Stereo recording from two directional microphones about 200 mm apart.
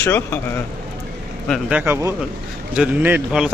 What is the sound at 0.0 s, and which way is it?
Speech, 10° left (ahead or behind).